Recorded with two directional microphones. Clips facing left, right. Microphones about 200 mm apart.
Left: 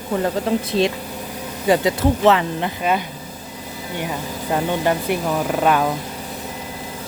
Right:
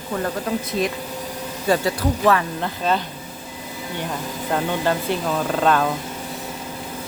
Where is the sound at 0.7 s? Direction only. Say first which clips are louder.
Left 4 dB; 30° left (ahead or behind); by 5.9 s 10° left (ahead or behind).